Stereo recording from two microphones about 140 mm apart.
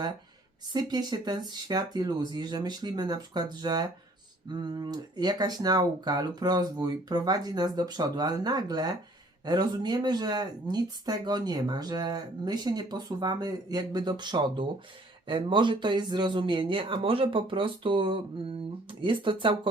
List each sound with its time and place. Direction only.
0.7 s speech: 30° right (ahead or behind)